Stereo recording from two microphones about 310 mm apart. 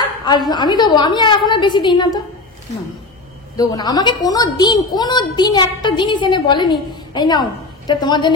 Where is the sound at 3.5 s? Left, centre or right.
Centre.